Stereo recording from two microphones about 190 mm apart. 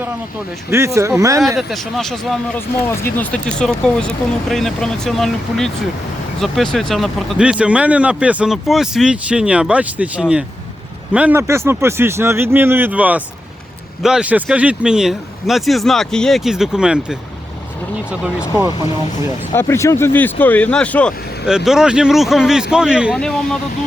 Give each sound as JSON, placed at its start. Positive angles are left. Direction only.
{"t": 0.7, "sound": "speech", "side_deg": -15}
{"t": 1.5, "sound": "speech", "side_deg": 0}
{"t": 19.5, "sound": "speech", "side_deg": 15}